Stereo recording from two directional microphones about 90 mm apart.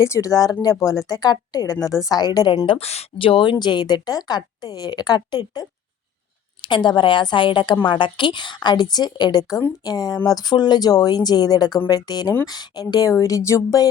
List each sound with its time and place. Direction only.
0.0 s a woman's voice: 35° left (ahead or behind)
2.6 s speech: 80° left
3.6 s a woman's voice: 55° left (ahead or behind); by 13.9 s 40° left (ahead or behind)